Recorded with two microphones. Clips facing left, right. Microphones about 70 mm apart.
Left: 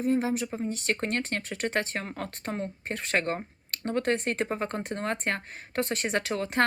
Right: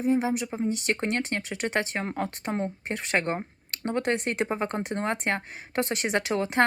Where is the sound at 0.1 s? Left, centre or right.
Centre.